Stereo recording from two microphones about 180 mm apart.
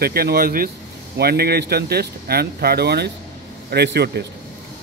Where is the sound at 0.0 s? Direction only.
60° right (ahead or behind).